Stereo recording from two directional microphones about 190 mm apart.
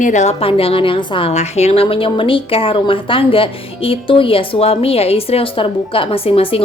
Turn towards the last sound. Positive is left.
turn(degrees=30)  # may be behind; listen again after turning